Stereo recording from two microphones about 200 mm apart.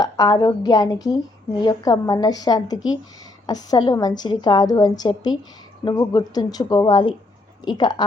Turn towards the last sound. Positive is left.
turn(degrees=20)  # may be behind; listen again after turning